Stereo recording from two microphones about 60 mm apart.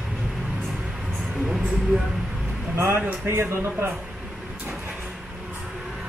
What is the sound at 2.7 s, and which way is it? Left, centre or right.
Music, right.